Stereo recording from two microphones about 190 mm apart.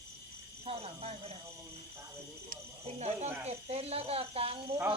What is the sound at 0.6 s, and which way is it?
Speech, 30° right (ahead or behind).